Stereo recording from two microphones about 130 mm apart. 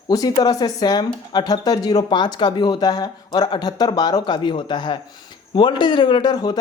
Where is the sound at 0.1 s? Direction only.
30° left (ahead or behind).